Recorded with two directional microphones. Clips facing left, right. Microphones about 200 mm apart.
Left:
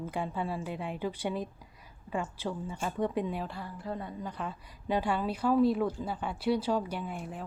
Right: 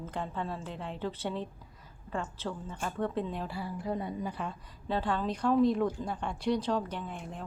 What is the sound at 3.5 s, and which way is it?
Speech, 10° right (ahead or behind).